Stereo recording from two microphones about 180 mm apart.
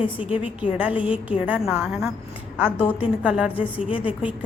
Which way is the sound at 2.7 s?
10° left (ahead or behind).